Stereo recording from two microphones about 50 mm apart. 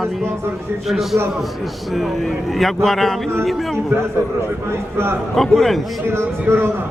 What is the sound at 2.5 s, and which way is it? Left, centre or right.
Speech, centre.